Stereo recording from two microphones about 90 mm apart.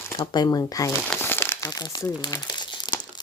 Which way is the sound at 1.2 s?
25° left (ahead or behind).